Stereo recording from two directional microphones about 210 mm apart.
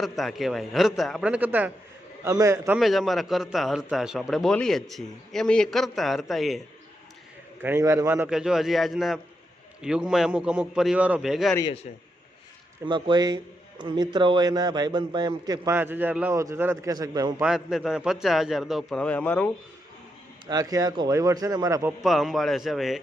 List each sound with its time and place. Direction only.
0.0 s a man's voice: centre (ahead or behind)
2.7 s a man's voice: centre (ahead or behind)
7.6 s a man's voice: 10° right (ahead or behind)
12.8 s a man's voice: 20° right (ahead or behind)
17.4 s a man's voice: 5° right (ahead or behind)
20.5 s speech: 15° right (ahead or behind)
22.0 s a man's voice: centre (ahead or behind)